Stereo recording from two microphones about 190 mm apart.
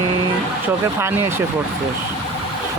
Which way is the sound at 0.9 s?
15° right (ahead or behind).